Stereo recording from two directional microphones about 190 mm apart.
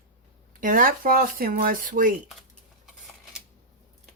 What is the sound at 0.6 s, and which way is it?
Speech, 45° right (ahead or behind).